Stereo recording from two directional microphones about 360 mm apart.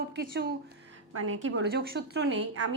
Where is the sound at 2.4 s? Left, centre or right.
Right.